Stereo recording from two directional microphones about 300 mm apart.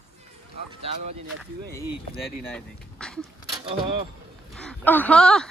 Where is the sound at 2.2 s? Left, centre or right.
Centre.